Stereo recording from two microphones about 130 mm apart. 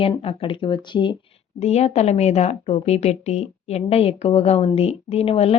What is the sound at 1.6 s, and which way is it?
A woman's voice, 55° left (ahead or behind).